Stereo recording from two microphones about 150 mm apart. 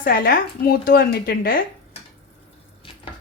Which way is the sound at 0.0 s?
80° left.